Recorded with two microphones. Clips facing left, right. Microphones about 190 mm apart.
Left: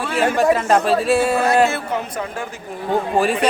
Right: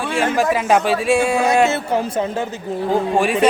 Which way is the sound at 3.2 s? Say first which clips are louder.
Even; centre (ahead or behind).